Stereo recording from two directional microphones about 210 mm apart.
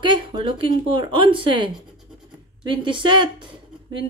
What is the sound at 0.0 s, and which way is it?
Speech, 20° right (ahead or behind).